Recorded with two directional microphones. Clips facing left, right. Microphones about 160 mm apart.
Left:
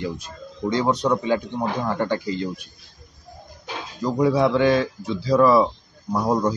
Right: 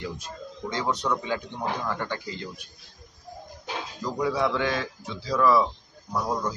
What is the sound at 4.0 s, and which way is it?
Speech, 35° left (ahead or behind).